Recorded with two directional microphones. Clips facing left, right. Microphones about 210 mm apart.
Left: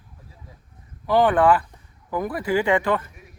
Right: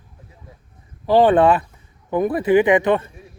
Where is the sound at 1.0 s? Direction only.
25° right (ahead or behind).